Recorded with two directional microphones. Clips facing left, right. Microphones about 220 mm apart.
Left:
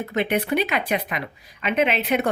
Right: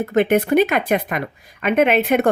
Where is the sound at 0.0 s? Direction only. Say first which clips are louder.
Right 7 dB; 50° right (ahead or behind).